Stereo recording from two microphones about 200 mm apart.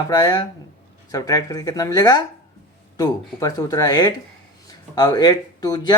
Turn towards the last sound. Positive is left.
turn(degrees=20)  # may be behind; listen again after turning